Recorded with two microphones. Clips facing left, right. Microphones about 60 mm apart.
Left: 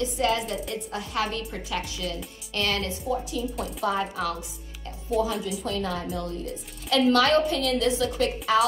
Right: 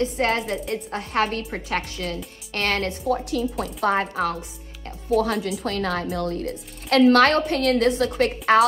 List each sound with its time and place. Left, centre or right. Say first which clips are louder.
0.0 s speech: right 3 dB; right
5.1 s speech: right 4 dB; right